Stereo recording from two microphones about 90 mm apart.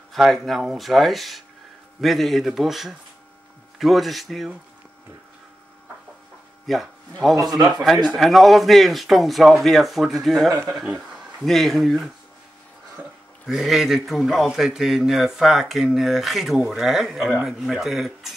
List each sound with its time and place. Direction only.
0.1 s a man's voice: centre (ahead or behind)
6.6 s speech: centre (ahead or behind)
7.4 s a man's voice: 50° right (ahead or behind)
7.8 s a man's voice: 5° right (ahead or behind)
13.5 s a man's voice: 5° right (ahead or behind)